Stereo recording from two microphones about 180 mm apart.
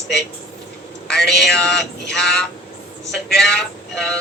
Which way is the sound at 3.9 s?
5° left (ahead or behind).